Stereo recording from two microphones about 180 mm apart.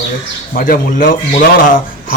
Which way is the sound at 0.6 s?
50° left (ahead or behind).